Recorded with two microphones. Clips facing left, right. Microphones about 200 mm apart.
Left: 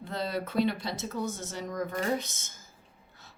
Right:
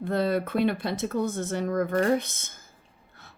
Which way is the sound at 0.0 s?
55° right (ahead or behind).